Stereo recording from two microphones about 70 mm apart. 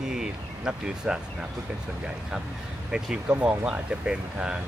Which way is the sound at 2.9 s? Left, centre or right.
Centre.